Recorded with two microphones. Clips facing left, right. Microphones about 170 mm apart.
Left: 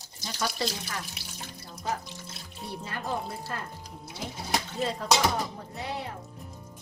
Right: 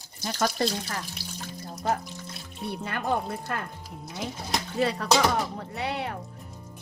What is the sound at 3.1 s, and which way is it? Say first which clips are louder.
Speech: right 5 dB; 65° right (ahead or behind).